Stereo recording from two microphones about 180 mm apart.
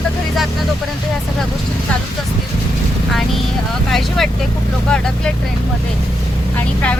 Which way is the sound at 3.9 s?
Centre (ahead or behind).